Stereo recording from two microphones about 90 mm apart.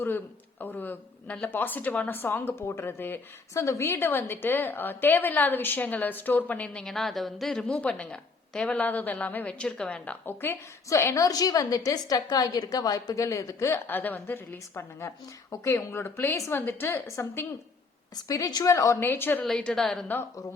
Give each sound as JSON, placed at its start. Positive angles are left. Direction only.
{"t": 0.6, "sound": "a woman's voice", "side_deg": 20}
{"t": 6.8, "sound": "a woman's voice", "side_deg": 5}
{"t": 10.2, "sound": "a woman's voice", "side_deg": 25}
{"t": 10.8, "sound": "a woman's voice", "side_deg": 35}
{"t": 18.3, "sound": "a woman's voice", "side_deg": 40}
{"t": 18.9, "sound": "a woman's voice", "side_deg": 25}
{"t": 19.5, "sound": "a woman's voice", "side_deg": 10}